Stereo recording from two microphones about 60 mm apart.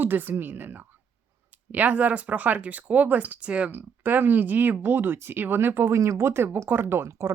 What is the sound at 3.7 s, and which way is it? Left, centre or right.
Speech, right.